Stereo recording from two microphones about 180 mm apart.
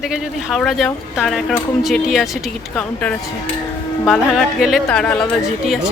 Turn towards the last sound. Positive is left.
turn(degrees=0)  # may be behind; listen again after turning